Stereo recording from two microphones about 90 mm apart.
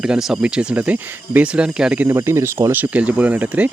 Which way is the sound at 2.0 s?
30° right (ahead or behind).